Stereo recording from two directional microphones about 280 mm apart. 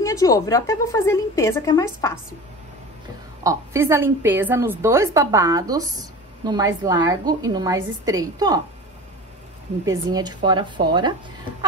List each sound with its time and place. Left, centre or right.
0.0 s a woman's voice: centre
3.4 s a woman's voice: centre
9.8 s a woman's voice: centre